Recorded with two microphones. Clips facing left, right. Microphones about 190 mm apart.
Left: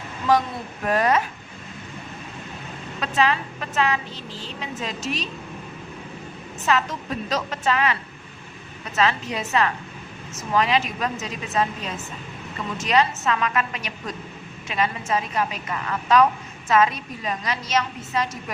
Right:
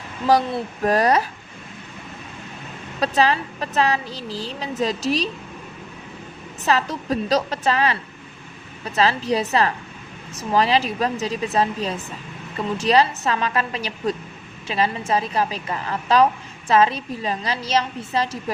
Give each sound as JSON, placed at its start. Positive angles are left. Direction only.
{"t": 0.3, "sound": "a woman's voice", "side_deg": -35}
{"t": 3.0, "sound": "a woman's voice", "side_deg": -35}
{"t": 6.7, "sound": "a woman's voice", "side_deg": -35}